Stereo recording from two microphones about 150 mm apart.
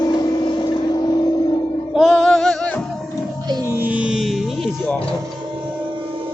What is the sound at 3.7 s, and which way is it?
Music, 10° right (ahead or behind).